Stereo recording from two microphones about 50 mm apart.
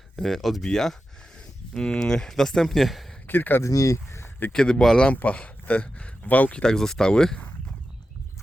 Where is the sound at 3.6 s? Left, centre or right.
Left.